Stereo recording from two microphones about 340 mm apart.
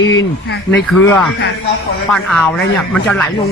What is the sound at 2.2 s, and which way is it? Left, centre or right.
Speech, centre.